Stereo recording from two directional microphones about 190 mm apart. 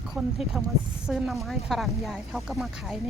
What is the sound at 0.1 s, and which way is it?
Speech, centre (ahead or behind).